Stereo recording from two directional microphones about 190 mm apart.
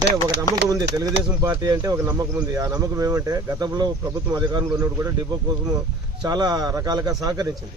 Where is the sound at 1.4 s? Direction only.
20° right (ahead or behind).